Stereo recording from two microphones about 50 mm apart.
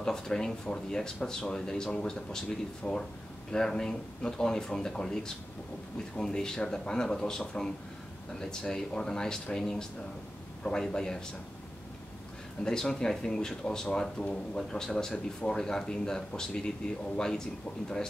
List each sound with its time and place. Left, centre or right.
0.0 s speech: centre
12.6 s speech: centre